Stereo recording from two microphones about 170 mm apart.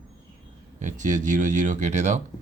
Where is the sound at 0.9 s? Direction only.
45° right (ahead or behind).